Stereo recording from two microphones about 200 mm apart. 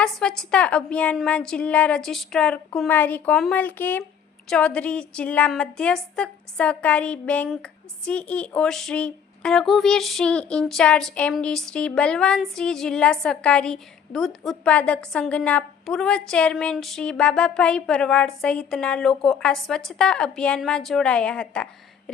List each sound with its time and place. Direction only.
0.0 s a woman's voice: 5° left (ahead or behind)